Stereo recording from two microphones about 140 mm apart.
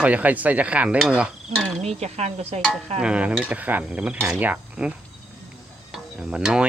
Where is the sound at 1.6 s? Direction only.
Centre (ahead or behind).